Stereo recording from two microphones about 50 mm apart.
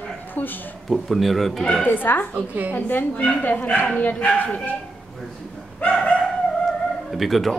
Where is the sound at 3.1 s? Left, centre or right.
Left.